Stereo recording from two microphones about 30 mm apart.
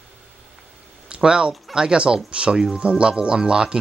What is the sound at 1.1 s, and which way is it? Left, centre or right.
Speech, right.